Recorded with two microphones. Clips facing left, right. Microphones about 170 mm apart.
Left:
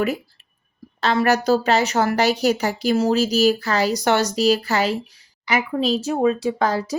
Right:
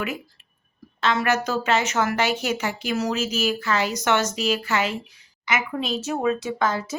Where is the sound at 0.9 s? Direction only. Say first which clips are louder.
Left 4 dB; 35° left (ahead or behind).